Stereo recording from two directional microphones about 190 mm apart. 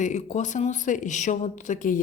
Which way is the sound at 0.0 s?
40° left (ahead or behind).